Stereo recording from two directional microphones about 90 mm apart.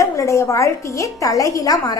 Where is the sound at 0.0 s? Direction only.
35° left (ahead or behind).